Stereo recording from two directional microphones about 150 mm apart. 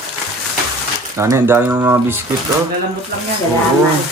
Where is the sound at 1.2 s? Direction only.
20° right (ahead or behind).